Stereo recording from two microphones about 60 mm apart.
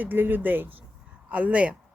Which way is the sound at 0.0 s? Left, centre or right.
Right.